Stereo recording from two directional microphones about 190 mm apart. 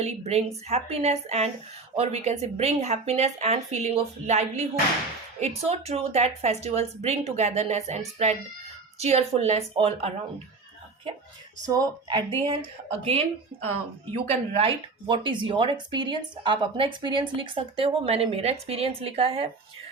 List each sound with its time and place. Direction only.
0.0 s a woman's voice: 35° right (ahead or behind)
11.6 s a woman's voice: 20° right (ahead or behind)
14.3 s a woman's voice: 30° right (ahead or behind)